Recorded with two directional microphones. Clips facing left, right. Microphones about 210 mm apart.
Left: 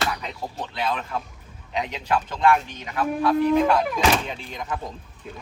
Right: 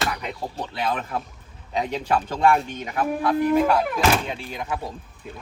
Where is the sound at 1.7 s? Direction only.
45° right (ahead or behind).